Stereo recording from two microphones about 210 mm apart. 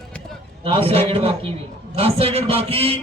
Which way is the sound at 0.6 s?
25° right (ahead or behind).